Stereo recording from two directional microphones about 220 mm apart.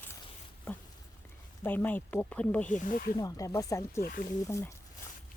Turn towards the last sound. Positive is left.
turn(degrees=15)  # may be behind; listen again after turning